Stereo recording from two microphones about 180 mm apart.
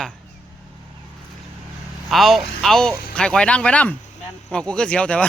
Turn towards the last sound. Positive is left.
turn(degrees=5)  # may be behind; listen again after turning